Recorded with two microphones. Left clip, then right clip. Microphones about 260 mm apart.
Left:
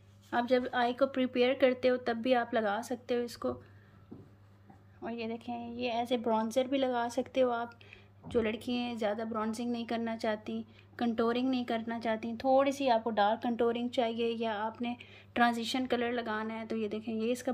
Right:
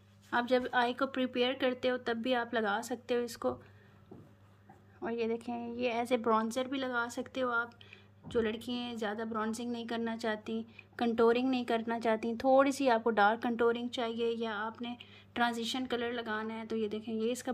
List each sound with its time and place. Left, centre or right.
0.3 s a woman's voice: centre
5.0 s a woman's voice: centre